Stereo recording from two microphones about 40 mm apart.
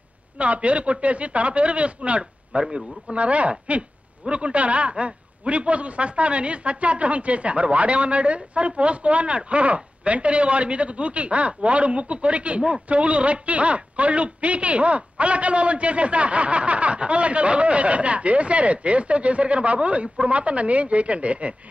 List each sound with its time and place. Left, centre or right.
0.4 s a man's voice: right